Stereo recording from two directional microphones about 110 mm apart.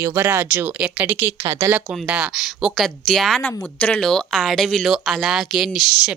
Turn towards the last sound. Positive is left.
turn(degrees=0)  # may be behind; listen again after turning